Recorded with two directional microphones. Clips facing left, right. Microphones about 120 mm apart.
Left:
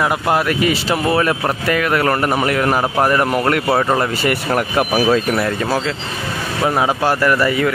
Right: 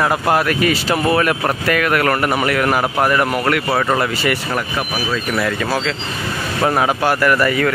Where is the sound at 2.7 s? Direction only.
5° right (ahead or behind).